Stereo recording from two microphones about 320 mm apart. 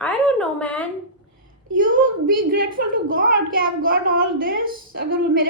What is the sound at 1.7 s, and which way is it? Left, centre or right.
A woman's voice, right.